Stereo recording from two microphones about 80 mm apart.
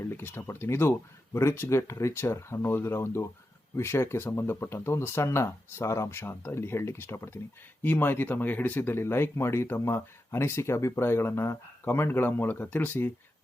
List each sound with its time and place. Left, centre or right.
0.0 s speech: left